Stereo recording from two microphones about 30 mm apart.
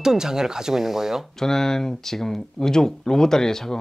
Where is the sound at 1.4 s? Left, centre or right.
Centre.